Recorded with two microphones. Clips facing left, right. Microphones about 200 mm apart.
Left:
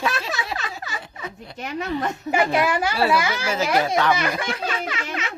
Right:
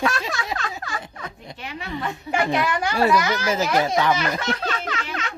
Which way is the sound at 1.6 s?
45° left (ahead or behind).